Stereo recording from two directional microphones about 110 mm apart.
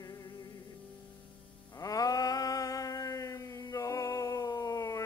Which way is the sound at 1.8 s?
35° left (ahead or behind).